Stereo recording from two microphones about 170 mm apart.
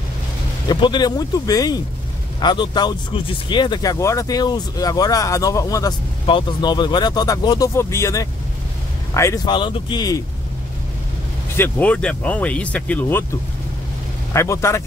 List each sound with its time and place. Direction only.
0.7 s speech: 25° left (ahead or behind)
11.5 s speech: 10° left (ahead or behind)
14.3 s speech: 15° left (ahead or behind)